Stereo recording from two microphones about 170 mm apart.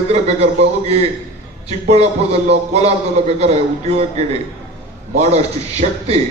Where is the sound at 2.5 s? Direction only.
40° right (ahead or behind).